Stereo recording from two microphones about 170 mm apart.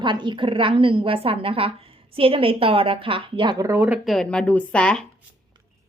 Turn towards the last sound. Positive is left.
turn(degrees=5)  # may be behind; listen again after turning